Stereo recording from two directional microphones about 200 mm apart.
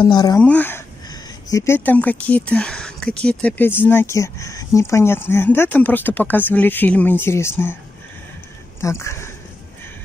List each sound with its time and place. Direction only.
0.0 s speech: 20° left (ahead or behind)
8.8 s speech: 15° left (ahead or behind)